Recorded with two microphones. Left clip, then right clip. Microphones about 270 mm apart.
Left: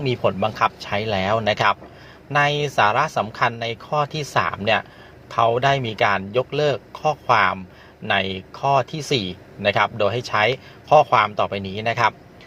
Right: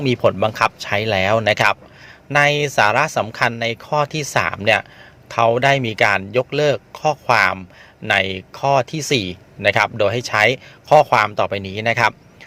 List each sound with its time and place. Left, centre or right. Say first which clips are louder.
0.0 s speech: right 4 dB; right